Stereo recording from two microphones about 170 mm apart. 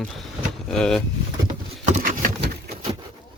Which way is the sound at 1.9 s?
50° right (ahead or behind).